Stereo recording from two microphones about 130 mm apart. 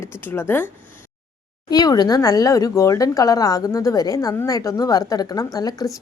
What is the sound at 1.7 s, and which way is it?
Speech, 30° left (ahead or behind).